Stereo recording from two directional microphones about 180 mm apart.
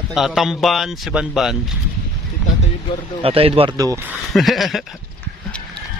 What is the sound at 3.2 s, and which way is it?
Speech, 30° right (ahead or behind).